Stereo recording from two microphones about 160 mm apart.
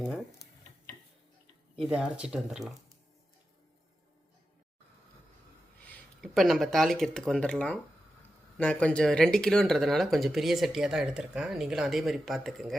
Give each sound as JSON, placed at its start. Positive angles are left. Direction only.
{"t": 1.8, "sound": "speech", "side_deg": -5}
{"t": 5.8, "sound": "speech", "side_deg": 0}